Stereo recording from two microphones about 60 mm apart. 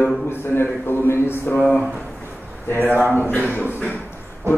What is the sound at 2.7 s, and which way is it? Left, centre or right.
Speech, left.